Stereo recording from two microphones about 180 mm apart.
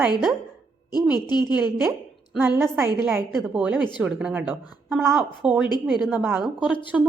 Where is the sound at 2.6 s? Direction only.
15° right (ahead or behind).